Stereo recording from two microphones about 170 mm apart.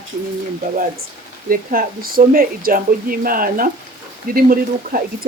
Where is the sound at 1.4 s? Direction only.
55° right (ahead or behind).